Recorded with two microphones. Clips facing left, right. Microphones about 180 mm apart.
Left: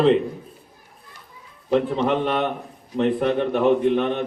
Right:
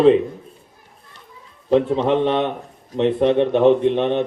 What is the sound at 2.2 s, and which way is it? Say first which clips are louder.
A man's voice: right 4 dB; 25° right (ahead or behind).